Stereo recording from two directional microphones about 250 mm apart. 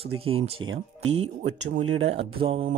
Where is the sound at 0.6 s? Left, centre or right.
Right.